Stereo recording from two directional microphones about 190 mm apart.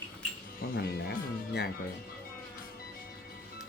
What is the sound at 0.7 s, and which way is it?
Speech, 55° left (ahead or behind).